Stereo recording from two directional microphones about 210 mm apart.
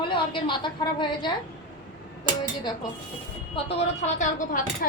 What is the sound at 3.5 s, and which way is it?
Speech, 30° left (ahead or behind).